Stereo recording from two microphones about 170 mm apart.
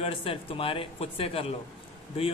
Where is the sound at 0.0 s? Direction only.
35° left (ahead or behind).